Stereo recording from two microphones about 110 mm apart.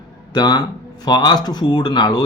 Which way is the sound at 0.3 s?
40° left (ahead or behind).